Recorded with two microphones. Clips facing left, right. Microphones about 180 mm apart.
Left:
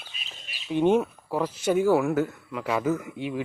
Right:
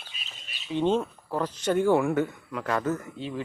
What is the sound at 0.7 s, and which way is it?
Speech, 10° left (ahead or behind).